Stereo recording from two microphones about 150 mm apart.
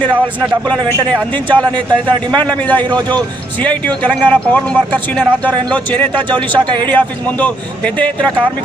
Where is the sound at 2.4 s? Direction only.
10° left (ahead or behind).